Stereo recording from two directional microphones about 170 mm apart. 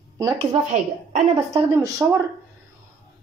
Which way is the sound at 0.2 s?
25° right (ahead or behind).